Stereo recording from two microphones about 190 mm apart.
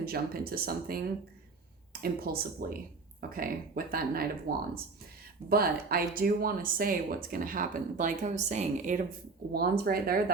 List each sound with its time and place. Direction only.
0.0 s speech: 50° right (ahead or behind)
9.5 s speech: 55° right (ahead or behind)